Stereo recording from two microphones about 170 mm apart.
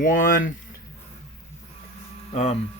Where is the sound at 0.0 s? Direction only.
55° left (ahead or behind).